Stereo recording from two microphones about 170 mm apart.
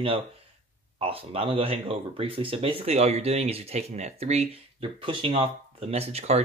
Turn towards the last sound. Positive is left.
turn(degrees=-40)  # may be behind; listen again after turning